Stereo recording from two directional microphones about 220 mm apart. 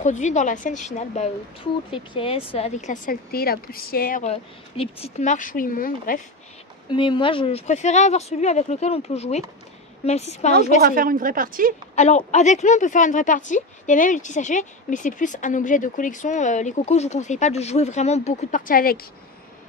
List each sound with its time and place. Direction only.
0.0 s a woman's voice: 35° left (ahead or behind)
6.9 s a woman's voice: 20° left (ahead or behind)
10.8 s a woman's voice: 40° right (ahead or behind)
11.9 s a woman's voice: 30° left (ahead or behind)